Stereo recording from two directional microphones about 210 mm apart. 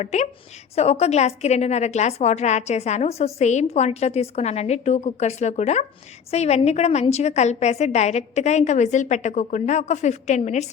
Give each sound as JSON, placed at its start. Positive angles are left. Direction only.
{"t": 0.0, "sound": "a woman's voice", "side_deg": 35}